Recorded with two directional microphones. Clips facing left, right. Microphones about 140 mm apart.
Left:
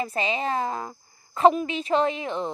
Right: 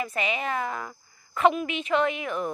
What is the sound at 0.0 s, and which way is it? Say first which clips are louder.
A woman's voice: left 2 dB; 30° left (ahead or behind).